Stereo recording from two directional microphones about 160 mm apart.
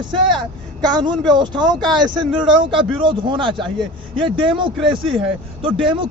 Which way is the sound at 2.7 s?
30° right (ahead or behind).